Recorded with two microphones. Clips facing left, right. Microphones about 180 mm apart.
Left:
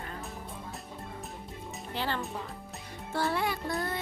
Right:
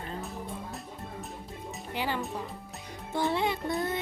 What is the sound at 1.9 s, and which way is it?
Child singing, 15° right (ahead or behind).